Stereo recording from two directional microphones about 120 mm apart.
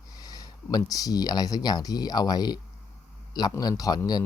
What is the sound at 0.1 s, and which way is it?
Speech, 30° left (ahead or behind).